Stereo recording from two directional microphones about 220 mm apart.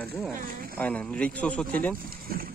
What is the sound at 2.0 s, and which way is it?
Speech, 40° right (ahead or behind).